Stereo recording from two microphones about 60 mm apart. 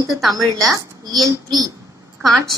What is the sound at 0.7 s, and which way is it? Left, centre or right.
A woman's voice, right.